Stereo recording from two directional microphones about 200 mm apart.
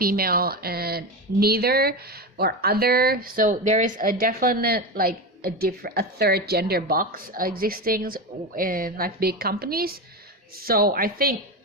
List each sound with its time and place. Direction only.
0.0 s speech: 50° right (ahead or behind)